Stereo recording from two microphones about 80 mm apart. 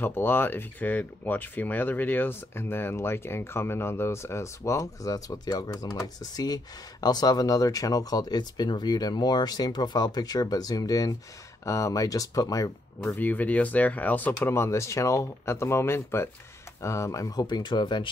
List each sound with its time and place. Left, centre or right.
0.0 s speech: left
13.1 s speech: left
14.5 s speech: left
17.5 s speech: left